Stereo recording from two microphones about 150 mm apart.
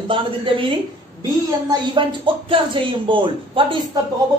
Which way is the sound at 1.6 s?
35° right (ahead or behind).